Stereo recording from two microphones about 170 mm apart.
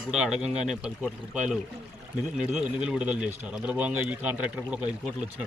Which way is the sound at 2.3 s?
5° right (ahead or behind).